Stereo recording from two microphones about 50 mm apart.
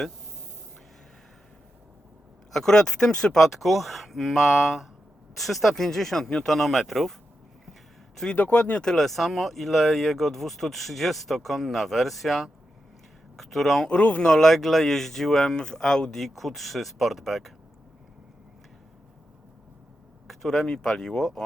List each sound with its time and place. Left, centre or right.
2.5 s speech: centre
3.3 s speech: centre
8.4 s speech: left
8.8 s speech: centre
9.0 s speech: centre
13.8 s speech: left
14.2 s speech: centre
20.2 s speech: centre